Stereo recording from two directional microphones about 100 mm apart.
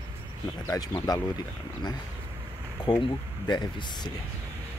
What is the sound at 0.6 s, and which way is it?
Speech, 35° left (ahead or behind).